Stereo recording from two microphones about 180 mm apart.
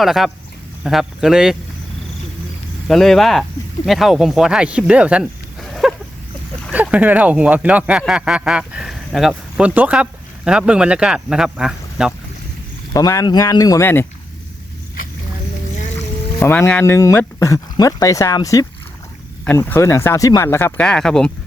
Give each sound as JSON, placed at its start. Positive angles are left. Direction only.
{"t": 0.0, "sound": "speech", "side_deg": 0}
{"t": 2.8, "sound": "speech", "side_deg": 0}
{"t": 12.9, "sound": "speech", "side_deg": 15}
{"t": 16.4, "sound": "speech", "side_deg": 10}